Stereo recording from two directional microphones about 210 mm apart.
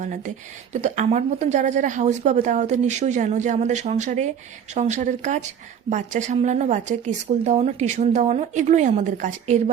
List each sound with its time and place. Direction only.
0.7 s a woman's voice: 35° right (ahead or behind)